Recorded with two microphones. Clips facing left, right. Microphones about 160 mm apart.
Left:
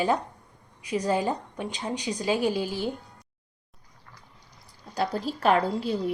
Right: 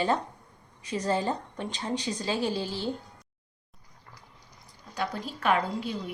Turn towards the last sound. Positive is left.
turn(degrees=35)  # may be behind; listen again after turning